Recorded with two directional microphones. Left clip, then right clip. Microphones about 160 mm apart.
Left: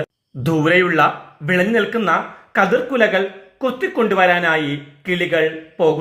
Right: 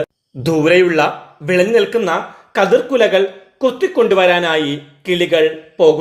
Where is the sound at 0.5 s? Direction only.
20° right (ahead or behind).